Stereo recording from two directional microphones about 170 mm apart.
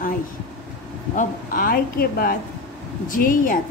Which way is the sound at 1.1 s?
55° left (ahead or behind).